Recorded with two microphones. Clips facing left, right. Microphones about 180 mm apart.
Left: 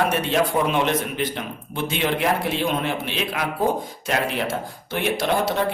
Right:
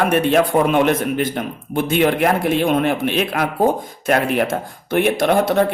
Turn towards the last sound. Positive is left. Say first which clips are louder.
# right 6 dB
turn(degrees=-55)  # may be behind; listen again after turning